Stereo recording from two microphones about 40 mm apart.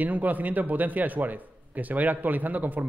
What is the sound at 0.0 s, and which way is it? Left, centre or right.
A man's voice, right.